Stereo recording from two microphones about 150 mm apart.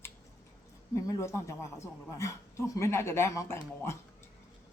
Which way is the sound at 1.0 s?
20° left (ahead or behind).